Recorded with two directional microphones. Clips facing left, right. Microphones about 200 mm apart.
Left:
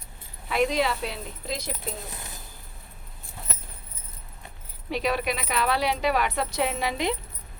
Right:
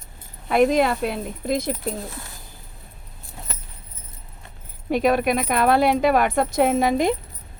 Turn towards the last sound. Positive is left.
turn(degrees=-45)  # may be behind; listen again after turning